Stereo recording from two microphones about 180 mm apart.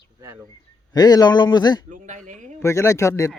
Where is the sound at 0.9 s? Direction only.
20° left (ahead or behind).